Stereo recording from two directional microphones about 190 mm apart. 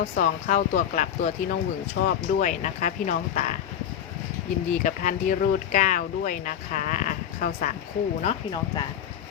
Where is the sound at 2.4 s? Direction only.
40° left (ahead or behind).